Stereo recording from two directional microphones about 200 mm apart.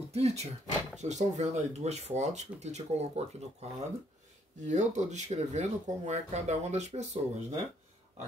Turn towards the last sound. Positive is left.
turn(degrees=-35)  # may be behind; listen again after turning